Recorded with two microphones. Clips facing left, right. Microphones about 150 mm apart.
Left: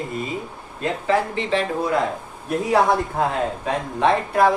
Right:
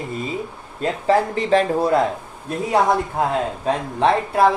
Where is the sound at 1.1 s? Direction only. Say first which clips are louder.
Right 4 dB; 40° right (ahead or behind).